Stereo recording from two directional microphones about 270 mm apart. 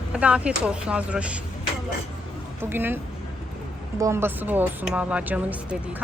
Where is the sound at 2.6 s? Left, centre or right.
Centre.